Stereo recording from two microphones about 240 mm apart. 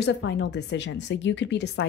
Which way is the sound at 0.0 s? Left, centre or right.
Left.